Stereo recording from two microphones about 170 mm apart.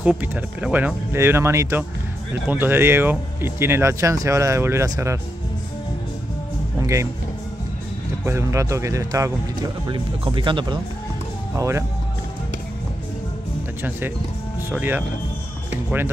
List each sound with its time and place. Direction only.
0.0 s speech: 10° right (ahead or behind)
8.3 s speech: 15° right (ahead or behind)
9.8 s speech: 30° right (ahead or behind)
11.5 s speech: 15° right (ahead or behind)
14.7 s speech: 10° right (ahead or behind)